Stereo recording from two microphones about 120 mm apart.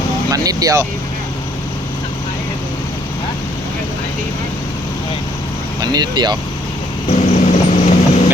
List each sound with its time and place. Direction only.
0.3 s speech: 30° right (ahead or behind)
5.8 s speech: 35° right (ahead or behind)
7.1 s vehicle: 85° left